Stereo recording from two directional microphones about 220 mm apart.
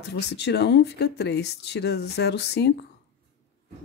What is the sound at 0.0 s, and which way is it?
Speech, 50° left (ahead or behind).